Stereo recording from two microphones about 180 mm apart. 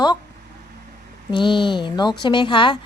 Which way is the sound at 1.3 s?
25° left (ahead or behind).